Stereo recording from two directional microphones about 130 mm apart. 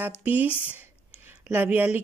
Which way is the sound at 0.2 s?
15° right (ahead or behind).